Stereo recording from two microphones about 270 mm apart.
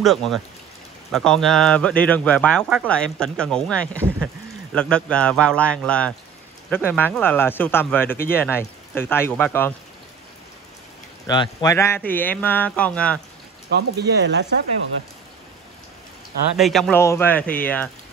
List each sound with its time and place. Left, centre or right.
0.0 s speech: centre
11.2 s speech: centre
13.7 s speech: right
16.5 s speech: centre